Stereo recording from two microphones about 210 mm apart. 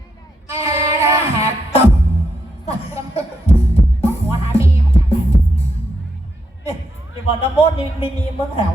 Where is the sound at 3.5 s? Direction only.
30° left (ahead or behind).